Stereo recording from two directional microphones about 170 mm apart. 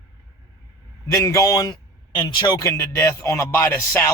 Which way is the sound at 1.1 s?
20° left (ahead or behind).